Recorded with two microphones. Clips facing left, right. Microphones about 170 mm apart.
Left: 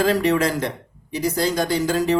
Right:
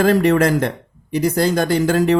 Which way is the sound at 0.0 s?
50° right (ahead or behind).